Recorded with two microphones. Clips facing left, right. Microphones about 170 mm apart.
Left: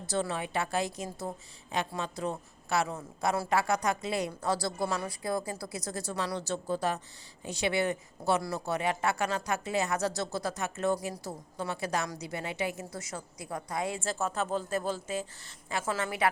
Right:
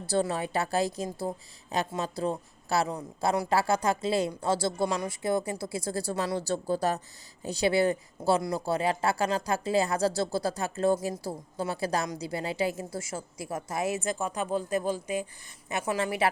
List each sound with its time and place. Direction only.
0.0 s a woman's voice: 35° right (ahead or behind)